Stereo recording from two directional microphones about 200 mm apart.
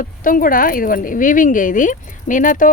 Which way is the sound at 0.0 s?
45° left (ahead or behind).